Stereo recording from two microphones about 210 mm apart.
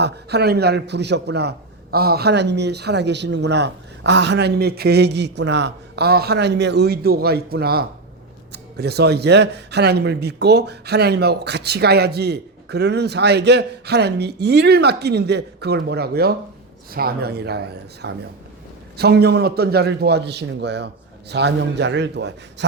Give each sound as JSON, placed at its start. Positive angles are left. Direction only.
{"t": 0.0, "sound": "a man's voice", "side_deg": -50}